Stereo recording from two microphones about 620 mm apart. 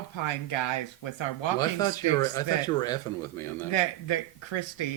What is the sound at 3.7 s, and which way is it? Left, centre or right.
Speech, left.